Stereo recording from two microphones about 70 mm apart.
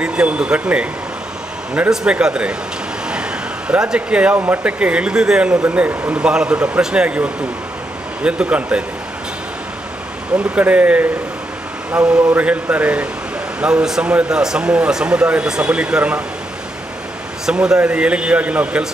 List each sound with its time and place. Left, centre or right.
0.0 s speech: centre
3.1 s a sound: centre
4.6 s speech: centre
10.3 s a man's voice: centre
17.5 s speech: centre